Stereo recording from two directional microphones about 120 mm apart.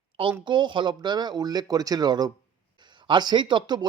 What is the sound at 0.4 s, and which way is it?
Speech, 40° right (ahead or behind).